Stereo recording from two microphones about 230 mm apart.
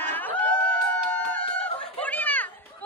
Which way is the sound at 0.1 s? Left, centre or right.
Centre.